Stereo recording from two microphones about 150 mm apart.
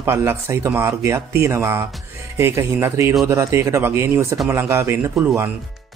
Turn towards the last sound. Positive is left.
turn(degrees=-15)  # may be behind; listen again after turning